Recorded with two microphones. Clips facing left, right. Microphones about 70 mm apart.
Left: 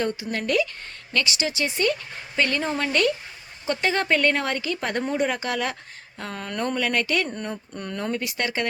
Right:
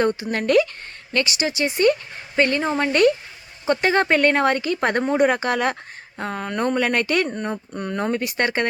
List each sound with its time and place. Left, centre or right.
0.0 s speech: right
1.1 s speech: right
6.1 s speech: right
6.7 s speech: right